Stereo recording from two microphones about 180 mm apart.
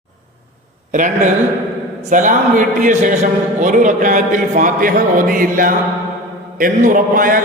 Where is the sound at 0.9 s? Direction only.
45° right (ahead or behind).